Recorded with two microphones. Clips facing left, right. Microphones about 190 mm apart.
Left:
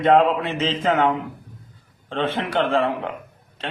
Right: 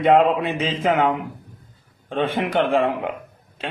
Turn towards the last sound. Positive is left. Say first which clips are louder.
# right 1 dB
turn(degrees=-15)  # may be behind; listen again after turning